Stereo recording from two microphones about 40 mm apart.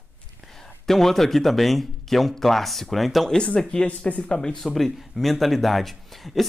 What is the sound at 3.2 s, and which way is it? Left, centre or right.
Speech, left.